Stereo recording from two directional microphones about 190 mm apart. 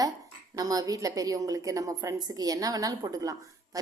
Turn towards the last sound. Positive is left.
turn(degrees=-20)  # may be behind; listen again after turning